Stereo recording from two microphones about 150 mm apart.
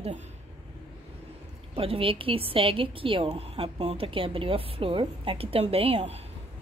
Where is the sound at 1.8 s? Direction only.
40° right (ahead or behind).